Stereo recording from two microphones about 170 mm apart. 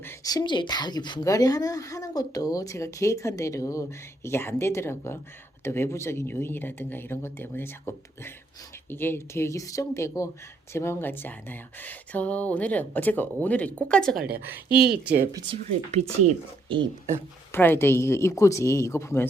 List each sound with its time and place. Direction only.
0.0 s a woman's voice: 15° left (ahead or behind)
14.2 s a woman's voice: 65° right (ahead or behind)
15.3 s speech: 25° right (ahead or behind)
15.6 s speech: 40° right (ahead or behind)
17.5 s speech: 10° left (ahead or behind)